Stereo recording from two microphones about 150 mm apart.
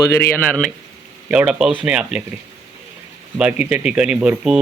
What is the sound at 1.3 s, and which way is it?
Speech, 5° right (ahead or behind).